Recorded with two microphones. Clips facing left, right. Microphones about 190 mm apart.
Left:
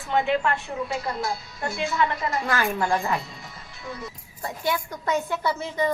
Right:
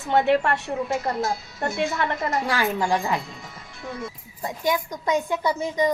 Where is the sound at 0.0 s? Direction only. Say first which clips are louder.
Right 3 dB; 65° right (ahead or behind).